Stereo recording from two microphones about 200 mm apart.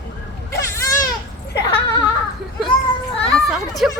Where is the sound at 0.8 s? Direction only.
15° left (ahead or behind).